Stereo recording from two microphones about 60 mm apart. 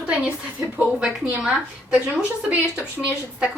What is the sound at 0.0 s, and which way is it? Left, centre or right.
Speech, centre.